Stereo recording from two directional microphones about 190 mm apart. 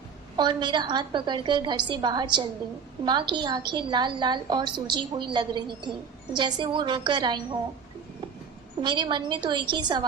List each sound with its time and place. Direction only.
0.3 s a woman's voice: 25° right (ahead or behind)
8.8 s a woman's voice: 25° right (ahead or behind)